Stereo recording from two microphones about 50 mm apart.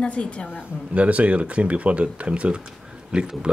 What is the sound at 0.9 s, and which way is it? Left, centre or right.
Speech, right.